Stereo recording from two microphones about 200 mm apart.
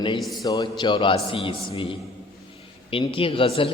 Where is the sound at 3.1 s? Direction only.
25° left (ahead or behind).